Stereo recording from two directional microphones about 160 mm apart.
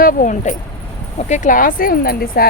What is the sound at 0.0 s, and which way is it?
Speech, 55° left (ahead or behind).